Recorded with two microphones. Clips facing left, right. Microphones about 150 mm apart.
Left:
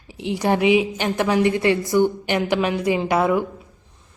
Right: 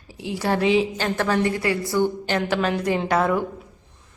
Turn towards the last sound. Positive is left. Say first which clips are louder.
# left 2 dB
turn(degrees=10)  # may be behind; listen again after turning